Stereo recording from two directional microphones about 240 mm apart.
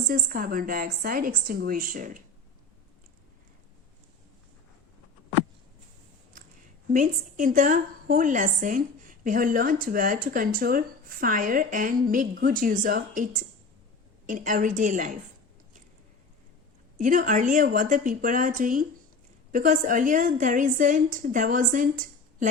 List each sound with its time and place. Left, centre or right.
0.1 s a woman's voice: right
6.9 s a woman's voice: right
17.0 s a woman's voice: right